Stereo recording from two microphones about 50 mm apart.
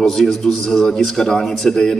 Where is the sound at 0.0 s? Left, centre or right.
Centre.